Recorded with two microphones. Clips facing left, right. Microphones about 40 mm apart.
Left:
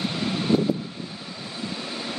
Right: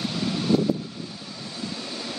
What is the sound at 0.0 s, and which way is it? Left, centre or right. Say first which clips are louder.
Vehicle: left 1 dB; left.